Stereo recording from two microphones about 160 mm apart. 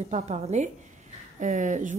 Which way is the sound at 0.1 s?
45° right (ahead or behind).